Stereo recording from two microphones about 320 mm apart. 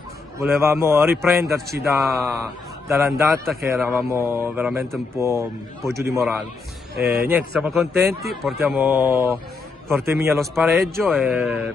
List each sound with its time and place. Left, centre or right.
0.4 s speech: centre
1.1 s speech: right
1.9 s a man's voice: centre